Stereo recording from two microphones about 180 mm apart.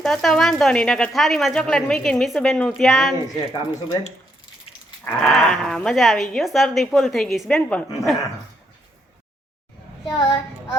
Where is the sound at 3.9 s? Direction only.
25° left (ahead or behind).